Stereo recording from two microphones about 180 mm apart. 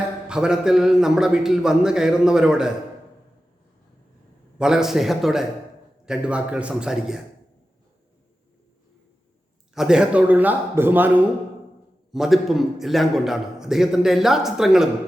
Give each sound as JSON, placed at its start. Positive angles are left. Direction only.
{"t": 0.3, "sound": "a man's voice", "side_deg": -5}
{"t": 4.5, "sound": "a man's voice", "side_deg": -5}
{"t": 9.7, "sound": "a man's voice", "side_deg": -5}